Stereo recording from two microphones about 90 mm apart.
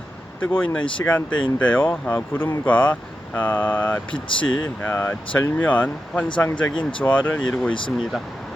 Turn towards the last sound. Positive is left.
turn(degrees=10)  # may be behind; listen again after turning